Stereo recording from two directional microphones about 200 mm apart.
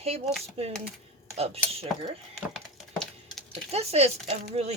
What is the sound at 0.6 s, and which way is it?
Cutlery, 30° right (ahead or behind).